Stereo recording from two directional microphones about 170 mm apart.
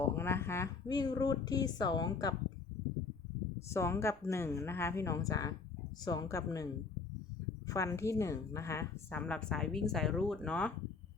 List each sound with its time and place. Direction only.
0.0 s speech: 15° left (ahead or behind)
3.7 s a woman's voice: 15° left (ahead or behind)
7.7 s a woman's voice: 20° left (ahead or behind)